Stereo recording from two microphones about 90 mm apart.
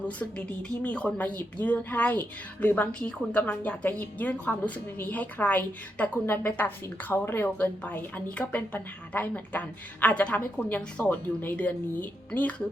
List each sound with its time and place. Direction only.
0.0 s speech: 15° left (ahead or behind)